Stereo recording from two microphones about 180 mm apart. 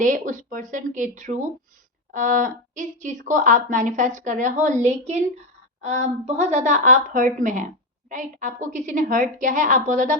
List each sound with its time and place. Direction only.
0.0 s a woman's voice: 45° right (ahead or behind)